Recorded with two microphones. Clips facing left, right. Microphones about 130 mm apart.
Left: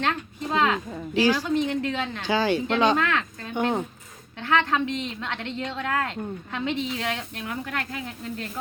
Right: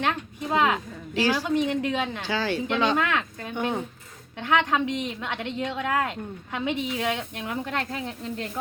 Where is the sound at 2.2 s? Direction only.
15° left (ahead or behind).